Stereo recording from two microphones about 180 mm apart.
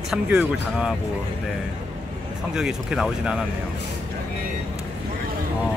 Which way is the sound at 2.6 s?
5° right (ahead or behind).